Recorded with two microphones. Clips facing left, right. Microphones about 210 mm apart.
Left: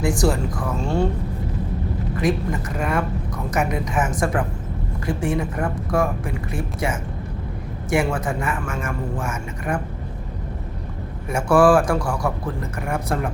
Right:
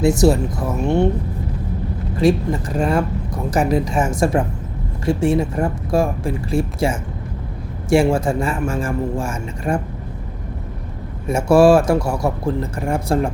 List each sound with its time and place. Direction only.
0.0 s speech: 25° right (ahead or behind)
2.1 s speech: 30° right (ahead or behind)
11.3 s speech: 25° right (ahead or behind)